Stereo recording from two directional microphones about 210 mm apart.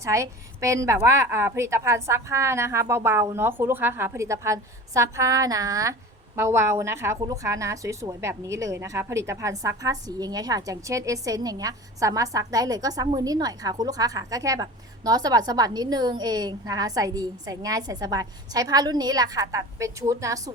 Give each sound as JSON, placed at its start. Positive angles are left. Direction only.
{"t": 0.0, "sound": "a woman's voice", "side_deg": -15}